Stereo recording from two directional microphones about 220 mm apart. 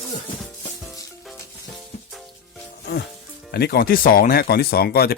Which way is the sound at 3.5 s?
45° left (ahead or behind).